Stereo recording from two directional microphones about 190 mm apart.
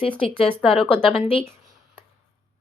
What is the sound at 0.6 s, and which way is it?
Speech, centre (ahead or behind).